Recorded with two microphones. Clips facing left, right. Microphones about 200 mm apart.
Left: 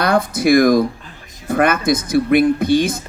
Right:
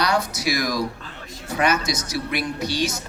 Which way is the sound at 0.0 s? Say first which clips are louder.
Left 7 dB; 55° left (ahead or behind).